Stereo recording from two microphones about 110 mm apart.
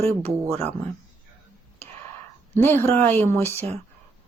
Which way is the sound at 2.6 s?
20° left (ahead or behind).